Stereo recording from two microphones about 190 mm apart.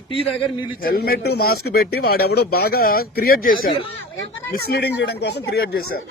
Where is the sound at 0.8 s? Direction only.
50° left (ahead or behind).